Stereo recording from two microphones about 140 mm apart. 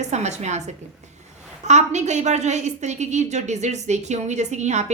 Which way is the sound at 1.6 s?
55° right (ahead or behind).